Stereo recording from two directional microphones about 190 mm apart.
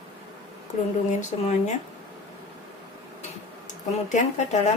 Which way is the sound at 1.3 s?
35° left (ahead or behind).